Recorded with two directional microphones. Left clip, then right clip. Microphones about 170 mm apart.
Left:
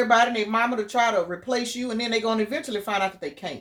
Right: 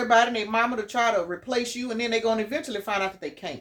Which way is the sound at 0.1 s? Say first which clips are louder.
Right 3 dB; 35° left (ahead or behind).